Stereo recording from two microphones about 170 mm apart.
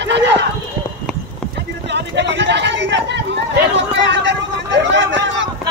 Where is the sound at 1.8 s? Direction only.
90° right.